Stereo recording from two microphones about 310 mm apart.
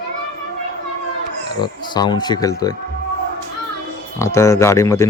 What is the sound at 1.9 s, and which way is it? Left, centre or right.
Speech, centre.